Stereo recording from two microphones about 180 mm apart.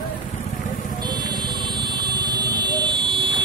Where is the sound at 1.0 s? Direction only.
25° right (ahead or behind).